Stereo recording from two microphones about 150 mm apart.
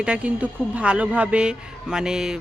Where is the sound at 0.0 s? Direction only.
5° right (ahead or behind).